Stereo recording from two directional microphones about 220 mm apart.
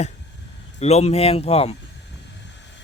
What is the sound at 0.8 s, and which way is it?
Speech, 30° left (ahead or behind).